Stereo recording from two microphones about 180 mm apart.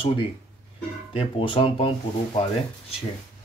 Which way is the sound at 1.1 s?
30° left (ahead or behind).